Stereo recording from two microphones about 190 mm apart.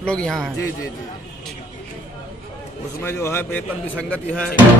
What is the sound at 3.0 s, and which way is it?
A man's voice, 15° left (ahead or behind).